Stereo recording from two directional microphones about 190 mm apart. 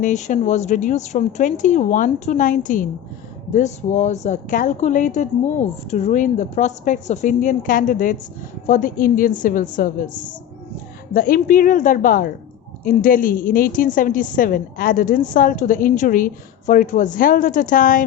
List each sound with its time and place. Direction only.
0.0 s a woman's voice: 40° left (ahead or behind)
11.1 s a woman's voice: 45° left (ahead or behind)